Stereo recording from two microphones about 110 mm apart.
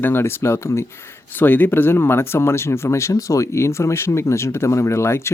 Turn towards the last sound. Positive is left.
turn(degrees=25)  # may be behind; listen again after turning